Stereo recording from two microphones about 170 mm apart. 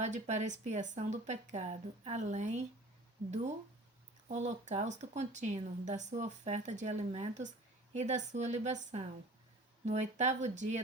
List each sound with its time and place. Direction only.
0.0 s speech: 40° right (ahead or behind)
4.3 s a woman's voice: 40° right (ahead or behind)